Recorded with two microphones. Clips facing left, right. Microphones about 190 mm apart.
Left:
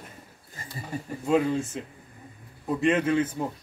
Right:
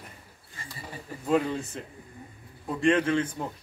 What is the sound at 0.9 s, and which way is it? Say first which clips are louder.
Speech: left 12 dB; 45° left (ahead or behind).